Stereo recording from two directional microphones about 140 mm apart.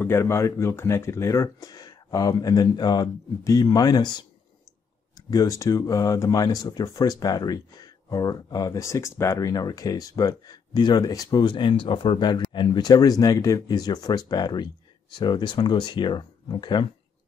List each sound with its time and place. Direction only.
0.0 s speech: 15° left (ahead or behind); by 16.8 s 35° left (ahead or behind)